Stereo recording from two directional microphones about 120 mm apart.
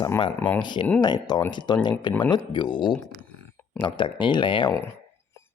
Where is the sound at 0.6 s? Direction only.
40° left (ahead or behind).